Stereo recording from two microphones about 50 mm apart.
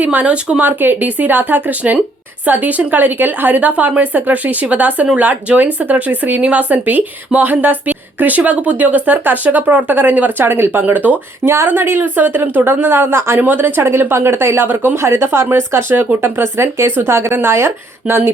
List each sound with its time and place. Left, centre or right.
0.0 s speech: right
11.4 s speech: right
11.7 s a woman's voice: right
13.4 s speech: right